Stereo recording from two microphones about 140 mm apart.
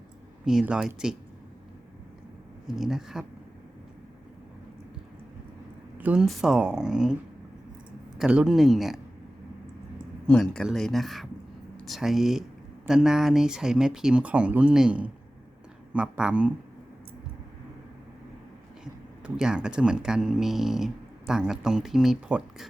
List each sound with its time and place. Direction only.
0.4 s speech: 5° right (ahead or behind)
2.6 s speech: 5° right (ahead or behind)
6.0 s speech: 10° right (ahead or behind)
10.2 s speech: 5° left (ahead or behind)
19.2 s speech: 5° right (ahead or behind)